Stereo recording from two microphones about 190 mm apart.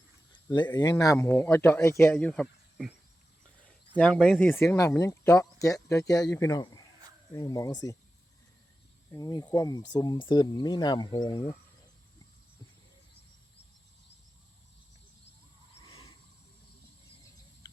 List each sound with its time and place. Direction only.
0.4 s a man's voice: 20° left (ahead or behind)
9.1 s speech: 20° left (ahead or behind)